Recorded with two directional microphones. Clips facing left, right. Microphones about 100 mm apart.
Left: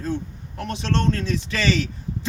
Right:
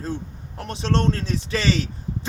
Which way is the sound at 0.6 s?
30° right (ahead or behind).